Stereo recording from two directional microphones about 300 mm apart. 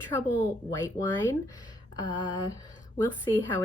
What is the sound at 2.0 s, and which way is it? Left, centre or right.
Speech, centre.